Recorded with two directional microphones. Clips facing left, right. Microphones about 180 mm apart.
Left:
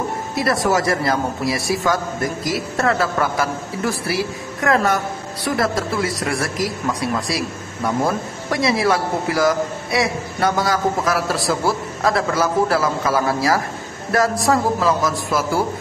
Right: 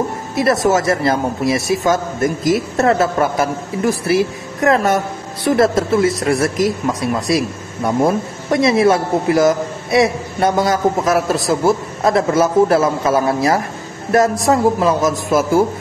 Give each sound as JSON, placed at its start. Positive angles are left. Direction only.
{"t": 0.4, "sound": "speech", "side_deg": -25}